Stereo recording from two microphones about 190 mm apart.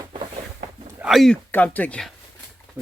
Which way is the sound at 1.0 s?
Centre (ahead or behind).